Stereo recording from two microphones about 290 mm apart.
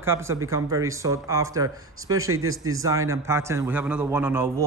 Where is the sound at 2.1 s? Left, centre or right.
Right.